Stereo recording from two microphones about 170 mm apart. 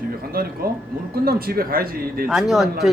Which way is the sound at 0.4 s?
65° right (ahead or behind).